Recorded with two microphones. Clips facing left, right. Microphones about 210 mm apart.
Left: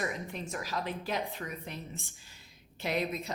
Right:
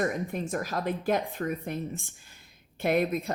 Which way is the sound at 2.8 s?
55° right (ahead or behind).